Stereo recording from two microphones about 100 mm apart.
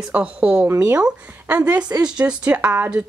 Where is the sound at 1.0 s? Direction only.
15° right (ahead or behind).